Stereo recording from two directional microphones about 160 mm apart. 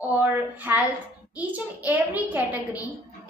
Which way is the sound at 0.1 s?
10° right (ahead or behind).